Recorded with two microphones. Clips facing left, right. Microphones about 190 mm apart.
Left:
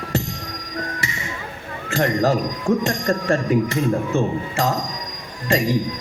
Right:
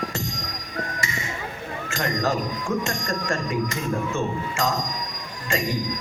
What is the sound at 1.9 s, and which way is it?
Speech, 35° left (ahead or behind).